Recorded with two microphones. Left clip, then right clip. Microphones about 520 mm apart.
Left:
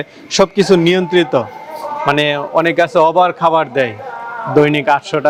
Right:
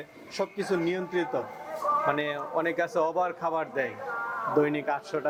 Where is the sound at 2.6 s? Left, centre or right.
Left.